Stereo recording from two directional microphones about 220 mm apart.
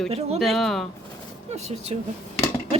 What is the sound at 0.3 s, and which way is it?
Speech, centre (ahead or behind).